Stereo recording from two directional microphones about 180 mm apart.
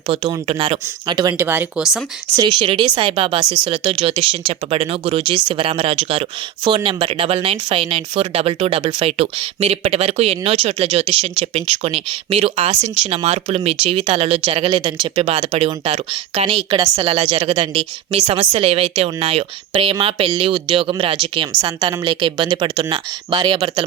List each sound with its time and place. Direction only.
0.1 s speech: 25° right (ahead or behind)
1.4 s speech: 10° right (ahead or behind)
2.3 s speech: 25° right (ahead or behind)
17.1 s speech: 35° right (ahead or behind)